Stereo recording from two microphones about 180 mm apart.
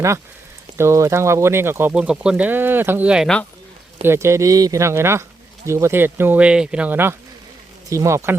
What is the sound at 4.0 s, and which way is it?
Speech, 15° right (ahead or behind).